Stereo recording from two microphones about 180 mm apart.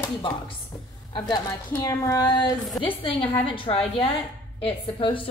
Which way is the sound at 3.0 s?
30° left (ahead or behind).